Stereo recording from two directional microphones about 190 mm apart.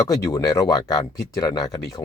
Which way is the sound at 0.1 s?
15° left (ahead or behind).